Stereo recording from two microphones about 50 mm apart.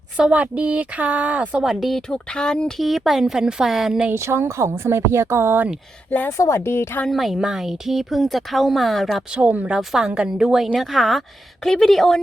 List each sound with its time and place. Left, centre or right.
0.2 s a woman's voice: right
2.1 s speech: centre
2.7 s speech: centre
4.1 s speech: right
6.1 s a woman's voice: left
6.3 s a woman's voice: left
7.1 s speech: centre
9.3 s a woman's voice: right
9.7 s speech: centre
10.8 s speech: centre